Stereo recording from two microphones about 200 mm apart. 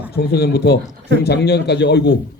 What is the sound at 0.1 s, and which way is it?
A man's voice, 55° left (ahead or behind).